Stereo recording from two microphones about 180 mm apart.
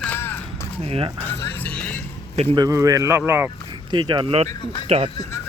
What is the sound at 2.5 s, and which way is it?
Speech, 20° right (ahead or behind).